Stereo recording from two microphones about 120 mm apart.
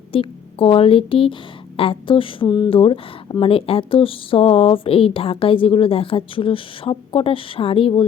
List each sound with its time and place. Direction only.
0.1 s speech: 50° left (ahead or behind)